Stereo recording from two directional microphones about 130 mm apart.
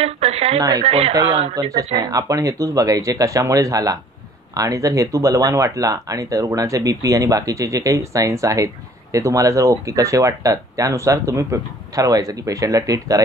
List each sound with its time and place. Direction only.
0.0 s speech: 50° right (ahead or behind)
0.6 s speech: 30° right (ahead or behind)
0.8 s speech: 50° right (ahead or behind)
1.5 s speech: 30° right (ahead or behind)